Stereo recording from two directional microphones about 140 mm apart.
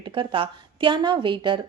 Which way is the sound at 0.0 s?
35° right (ahead or behind).